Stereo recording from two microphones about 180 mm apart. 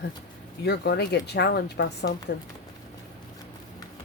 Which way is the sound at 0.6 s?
65° left (ahead or behind).